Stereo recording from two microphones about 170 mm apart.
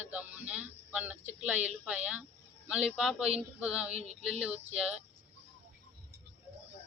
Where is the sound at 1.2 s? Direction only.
45° right (ahead or behind).